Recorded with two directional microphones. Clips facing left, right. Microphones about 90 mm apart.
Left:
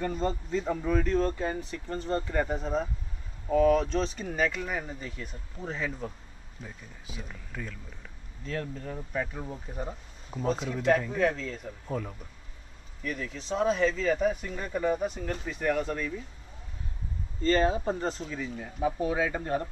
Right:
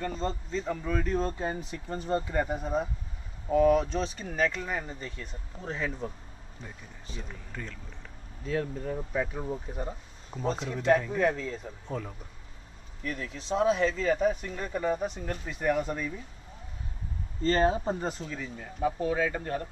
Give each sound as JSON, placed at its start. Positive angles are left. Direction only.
{"t": 0.0, "sound": "speech", "side_deg": 10}
{"t": 0.9, "sound": "speech", "side_deg": -10}
{"t": 1.4, "sound": "speech", "side_deg": -20}
{"t": 8.5, "sound": "speech", "side_deg": -10}
{"t": 17.4, "sound": "speech", "side_deg": -30}
{"t": 17.8, "sound": "speech", "side_deg": -10}
{"t": 18.3, "sound": "speech", "side_deg": 5}